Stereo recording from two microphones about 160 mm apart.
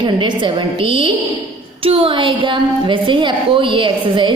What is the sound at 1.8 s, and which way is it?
A woman's voice, 35° right (ahead or behind).